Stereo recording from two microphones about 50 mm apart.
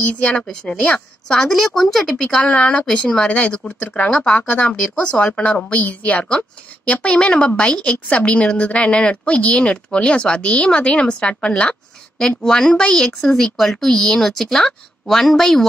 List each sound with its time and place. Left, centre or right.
0.4 s speech: centre
1.5 s speech: centre
2.4 s speech: left
4.4 s speech: left
4.6 s speech: left
13.2 s speech: centre